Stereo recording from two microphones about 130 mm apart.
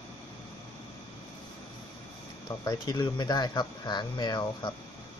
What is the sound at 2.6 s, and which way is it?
Speech, 30° left (ahead or behind).